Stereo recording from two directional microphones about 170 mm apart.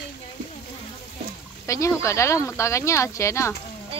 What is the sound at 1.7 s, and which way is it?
Speech, 15° left (ahead or behind).